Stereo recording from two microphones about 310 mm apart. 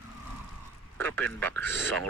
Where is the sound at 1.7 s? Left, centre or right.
Right.